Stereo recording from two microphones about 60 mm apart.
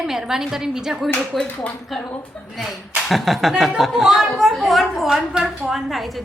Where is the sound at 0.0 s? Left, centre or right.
Centre.